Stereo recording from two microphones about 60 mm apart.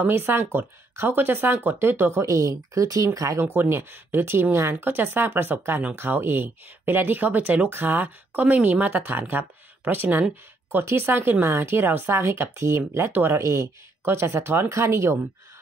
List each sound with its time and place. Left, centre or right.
0.0 s speech: right
2.2 s speech: right
3.3 s speech: right
13.4 s speech: right
14.0 s speech: right